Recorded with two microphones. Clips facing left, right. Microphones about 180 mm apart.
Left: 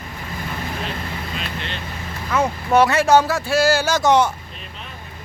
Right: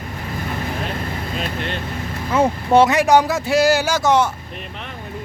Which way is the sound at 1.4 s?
50° right (ahead or behind).